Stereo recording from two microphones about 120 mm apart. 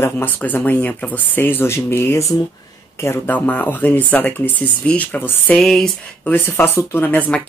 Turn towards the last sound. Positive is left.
turn(degrees=15)  # may be behind; listen again after turning